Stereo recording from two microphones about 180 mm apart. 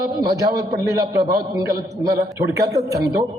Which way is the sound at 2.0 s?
20° right (ahead or behind).